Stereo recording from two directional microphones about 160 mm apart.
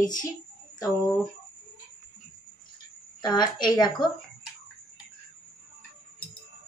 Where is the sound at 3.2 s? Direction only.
30° left (ahead or behind).